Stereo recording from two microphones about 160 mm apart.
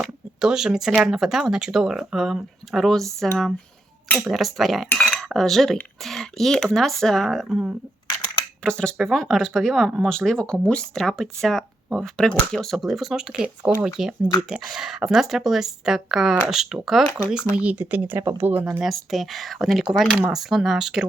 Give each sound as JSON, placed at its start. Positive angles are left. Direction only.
{"t": 0.0, "sound": "speech", "side_deg": -5}